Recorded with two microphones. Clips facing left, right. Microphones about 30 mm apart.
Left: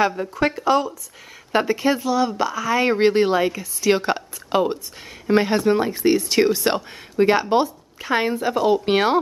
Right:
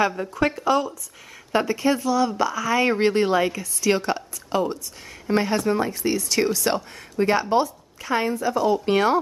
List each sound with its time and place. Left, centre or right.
0.1 s speech: centre
0.4 s speech: centre; by 9.2 s left